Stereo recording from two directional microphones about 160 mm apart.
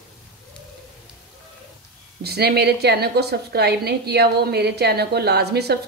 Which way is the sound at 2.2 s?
90° right.